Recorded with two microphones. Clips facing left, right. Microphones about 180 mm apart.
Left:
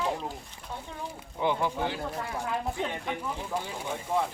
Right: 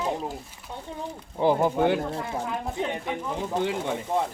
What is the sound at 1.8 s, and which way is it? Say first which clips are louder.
Speech: right 9 dB; 60° right (ahead or behind).